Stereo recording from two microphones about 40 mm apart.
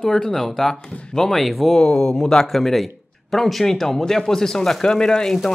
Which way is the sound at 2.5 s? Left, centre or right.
Centre.